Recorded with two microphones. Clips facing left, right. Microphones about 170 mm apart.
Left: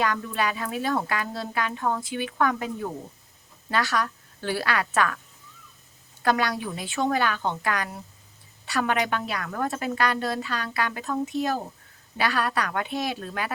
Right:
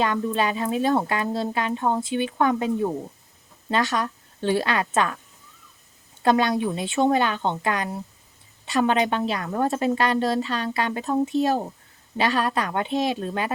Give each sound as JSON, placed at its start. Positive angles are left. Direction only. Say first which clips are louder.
{"t": 0.0, "sound": "a woman's voice", "louder": "right 3 dB", "side_deg": -25}
{"t": 6.2, "sound": "a woman's voice", "louder": "right 5 dB", "side_deg": -25}